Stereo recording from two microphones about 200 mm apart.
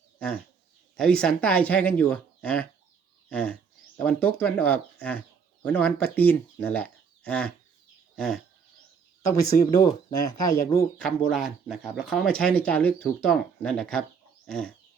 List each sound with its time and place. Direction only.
0.9 s speech: 5° left (ahead or behind)
8.1 s bird: centre (ahead or behind)
9.2 s speech: 20° left (ahead or behind)
10.9 s speech: 5° left (ahead or behind)
14.4 s a sound: 5° left (ahead or behind)